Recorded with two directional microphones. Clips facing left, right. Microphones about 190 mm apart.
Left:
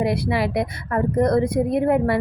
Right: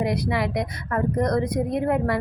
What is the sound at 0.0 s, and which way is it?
A woman's voice, 30° left (ahead or behind).